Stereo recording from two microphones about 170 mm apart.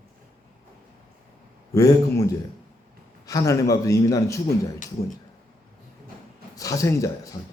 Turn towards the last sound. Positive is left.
turn(degrees=20)  # may be behind; listen again after turning